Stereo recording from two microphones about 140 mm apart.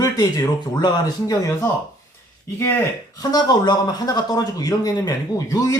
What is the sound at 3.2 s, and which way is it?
Speech, 30° left (ahead or behind).